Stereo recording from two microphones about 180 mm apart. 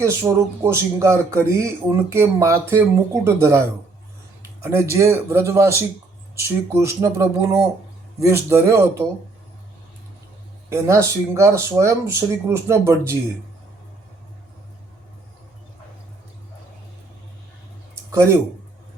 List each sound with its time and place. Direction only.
0.0 s speech: 15° right (ahead or behind)
4.6 s speech: 15° right (ahead or behind)
10.7 s speech: 15° right (ahead or behind)